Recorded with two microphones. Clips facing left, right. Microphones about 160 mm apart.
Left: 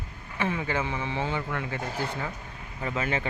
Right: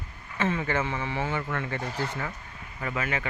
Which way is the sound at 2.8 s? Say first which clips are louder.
Left 1 dB; 25° left (ahead or behind).